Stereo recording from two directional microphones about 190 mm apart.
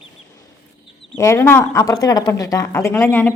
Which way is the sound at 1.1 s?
15° left (ahead or behind).